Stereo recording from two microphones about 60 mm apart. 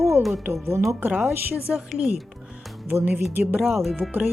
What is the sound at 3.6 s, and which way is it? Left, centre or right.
Speech, centre.